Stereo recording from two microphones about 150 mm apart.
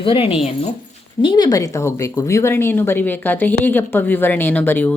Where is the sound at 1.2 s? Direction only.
30° left (ahead or behind).